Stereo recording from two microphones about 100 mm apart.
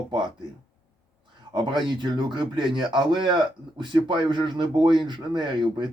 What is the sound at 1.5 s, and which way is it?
Speech, 50° right (ahead or behind).